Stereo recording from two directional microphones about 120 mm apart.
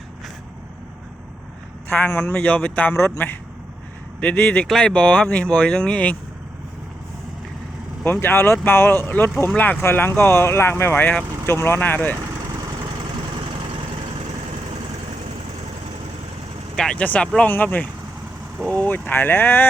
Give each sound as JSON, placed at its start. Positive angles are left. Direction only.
{"t": 1.9, "sound": "speech", "side_deg": 15}
{"t": 8.0, "sound": "speech", "side_deg": 20}
{"t": 16.7, "sound": "speech", "side_deg": 5}